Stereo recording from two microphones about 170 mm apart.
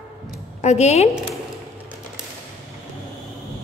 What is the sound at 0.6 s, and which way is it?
Speech, 40° left (ahead or behind).